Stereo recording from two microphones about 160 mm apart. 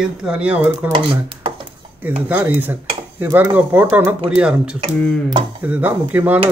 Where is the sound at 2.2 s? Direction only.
10° right (ahead or behind).